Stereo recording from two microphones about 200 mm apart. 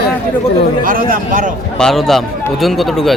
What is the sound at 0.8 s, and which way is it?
Speech, 45° right (ahead or behind).